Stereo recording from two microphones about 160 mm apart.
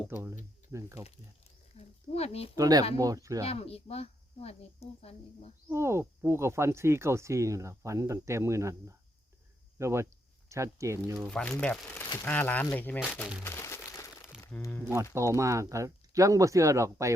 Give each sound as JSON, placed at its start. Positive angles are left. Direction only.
{"t": 0.1, "sound": "speech", "side_deg": -15}
{"t": 1.7, "sound": "a sound", "side_deg": 40}
{"t": 2.6, "sound": "speech", "side_deg": -25}
{"t": 3.4, "sound": "speech", "side_deg": 40}
{"t": 5.6, "sound": "speech", "side_deg": -15}
{"t": 11.3, "sound": "speech", "side_deg": 5}
{"t": 13.4, "sound": "a sound", "side_deg": 15}
{"t": 14.4, "sound": "speech", "side_deg": 15}
{"t": 15.1, "sound": "speech", "side_deg": -20}